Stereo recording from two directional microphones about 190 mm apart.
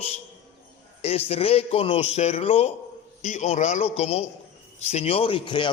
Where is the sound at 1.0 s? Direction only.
30° left (ahead or behind).